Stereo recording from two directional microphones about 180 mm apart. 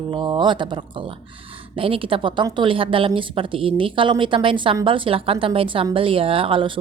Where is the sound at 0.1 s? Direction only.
25° right (ahead or behind).